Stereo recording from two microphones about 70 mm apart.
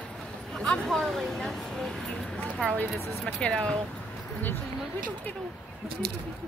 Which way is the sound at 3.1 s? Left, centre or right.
Centre.